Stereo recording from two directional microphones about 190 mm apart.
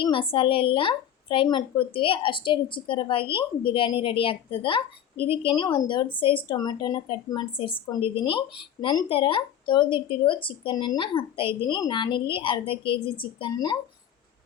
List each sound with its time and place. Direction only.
0.0 s a woman's voice: 25° left (ahead or behind)